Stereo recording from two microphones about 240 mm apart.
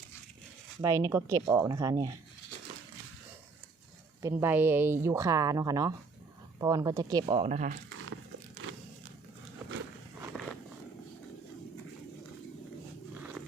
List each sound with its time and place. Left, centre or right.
0.8 s speech: centre
4.2 s speech: centre; by 7.8 s right
10.3 s a sound: centre